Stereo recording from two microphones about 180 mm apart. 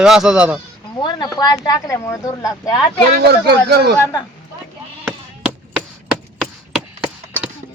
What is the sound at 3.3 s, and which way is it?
Speech, 65° right (ahead or behind).